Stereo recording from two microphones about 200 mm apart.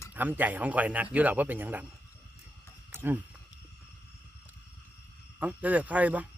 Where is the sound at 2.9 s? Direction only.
10° right (ahead or behind).